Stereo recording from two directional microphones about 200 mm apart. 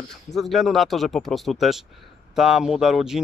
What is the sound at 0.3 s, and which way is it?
Speech, centre (ahead or behind).